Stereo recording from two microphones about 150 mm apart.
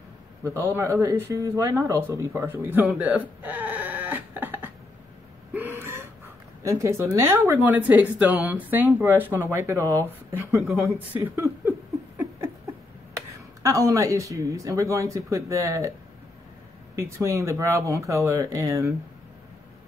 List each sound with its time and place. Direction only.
0.4 s speech: 20° right (ahead or behind)
5.5 s gasp: 15° right (ahead or behind)
6.6 s speech: 20° right (ahead or behind)
10.5 s speech: centre (ahead or behind)
11.2 s speech: 15° right (ahead or behind)
13.1 s speech: 20° right (ahead or behind)
16.9 s speech: 20° right (ahead or behind)